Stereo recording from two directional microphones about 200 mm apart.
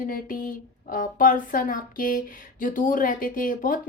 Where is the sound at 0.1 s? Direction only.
45° left (ahead or behind).